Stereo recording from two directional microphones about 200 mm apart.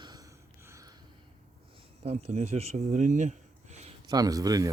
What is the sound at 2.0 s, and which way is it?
Speech, 30° right (ahead or behind).